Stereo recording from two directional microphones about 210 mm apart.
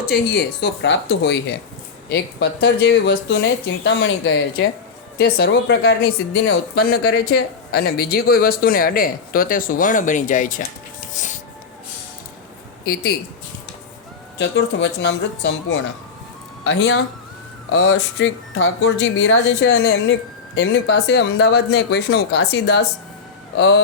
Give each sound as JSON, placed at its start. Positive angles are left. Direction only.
{"t": 0.0, "sound": "speech", "side_deg": 50}
{"t": 11.1, "sound": "music", "side_deg": 35}
{"t": 14.3, "sound": "speech", "side_deg": 55}